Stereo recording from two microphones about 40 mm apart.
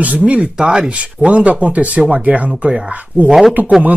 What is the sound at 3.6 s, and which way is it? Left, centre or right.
Speech, right.